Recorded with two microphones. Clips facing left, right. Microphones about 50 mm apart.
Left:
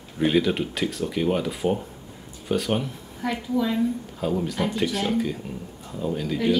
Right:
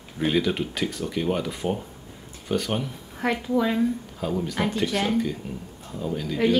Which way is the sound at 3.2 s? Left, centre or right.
Right.